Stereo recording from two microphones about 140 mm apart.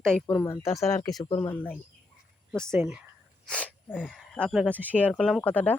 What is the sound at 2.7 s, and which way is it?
Speech, 10° right (ahead or behind).